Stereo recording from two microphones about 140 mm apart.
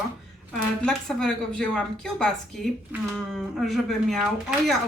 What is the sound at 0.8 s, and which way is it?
A woman's voice, 5° left (ahead or behind).